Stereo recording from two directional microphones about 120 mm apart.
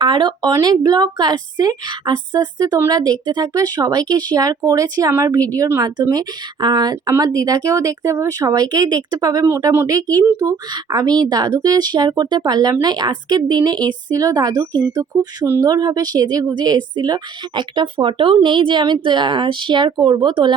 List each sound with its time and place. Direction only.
0.0 s a woman's voice: 40° right (ahead or behind)
2.7 s speech: 25° right (ahead or behind)
3.0 s a woman's voice: 35° right (ahead or behind)